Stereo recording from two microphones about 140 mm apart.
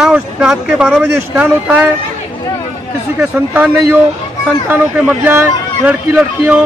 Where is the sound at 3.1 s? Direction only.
10° right (ahead or behind).